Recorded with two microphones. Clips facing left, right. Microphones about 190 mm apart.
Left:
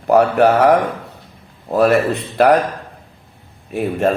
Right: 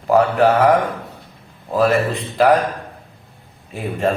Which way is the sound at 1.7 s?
65° left (ahead or behind).